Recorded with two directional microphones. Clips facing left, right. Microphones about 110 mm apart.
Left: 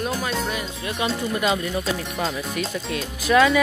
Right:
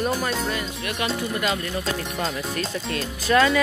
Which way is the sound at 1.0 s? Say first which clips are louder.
Left 3 dB; 20° left (ahead or behind).